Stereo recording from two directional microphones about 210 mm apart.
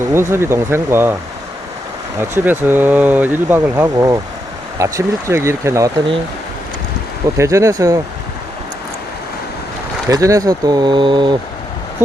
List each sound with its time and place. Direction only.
0.1 s speech: 10° right (ahead or behind)
2.3 s speech: 10° right (ahead or behind)
7.3 s speech: 15° right (ahead or behind)
10.1 s speech: 15° right (ahead or behind)